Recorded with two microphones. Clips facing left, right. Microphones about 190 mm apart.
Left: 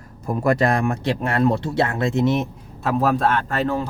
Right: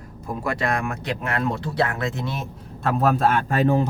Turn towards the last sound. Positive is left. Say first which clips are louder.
# right 2 dB
turn(degrees=-15)  # may be behind; listen again after turning